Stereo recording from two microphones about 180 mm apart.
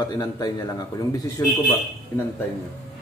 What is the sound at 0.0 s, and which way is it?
Speech, 20° left (ahead or behind).